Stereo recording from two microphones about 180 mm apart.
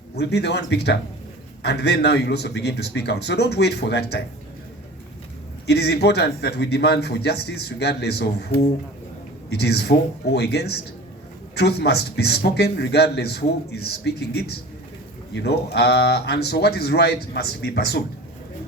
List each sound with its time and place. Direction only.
0.2 s a man's voice: 65° left (ahead or behind)
5.6 s a man's voice: 65° left (ahead or behind)